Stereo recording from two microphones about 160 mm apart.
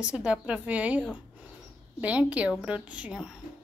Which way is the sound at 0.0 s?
5° right (ahead or behind).